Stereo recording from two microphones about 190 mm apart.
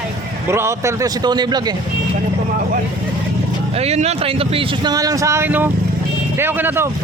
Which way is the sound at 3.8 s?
35° right (ahead or behind).